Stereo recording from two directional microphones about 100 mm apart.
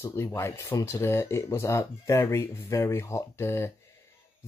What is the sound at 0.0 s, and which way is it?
Speech, 25° left (ahead or behind).